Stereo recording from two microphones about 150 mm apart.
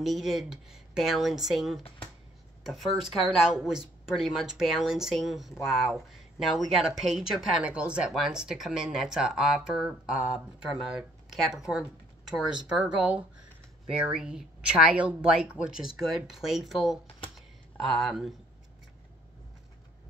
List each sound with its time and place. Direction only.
0.0 s speech: centre (ahead or behind)
1.8 s speech: 40° left (ahead or behind)
2.6 s speech: centre (ahead or behind)
18.0 s speech: centre (ahead or behind)